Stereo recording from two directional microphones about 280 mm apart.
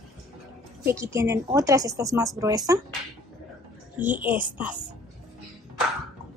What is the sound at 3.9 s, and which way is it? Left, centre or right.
Speech, centre.